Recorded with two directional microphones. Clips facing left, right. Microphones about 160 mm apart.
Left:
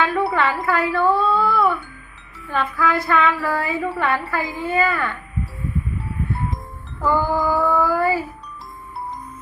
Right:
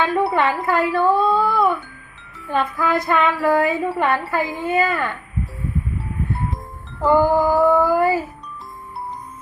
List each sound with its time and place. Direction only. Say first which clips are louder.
0.0 s a sound: right 1 dB; 20° right (ahead or behind)
2.5 s a woman's voice: right 1 dB; 15° right (ahead or behind)
7.0 s a woman's voice: right 4 dB; 15° right (ahead or behind)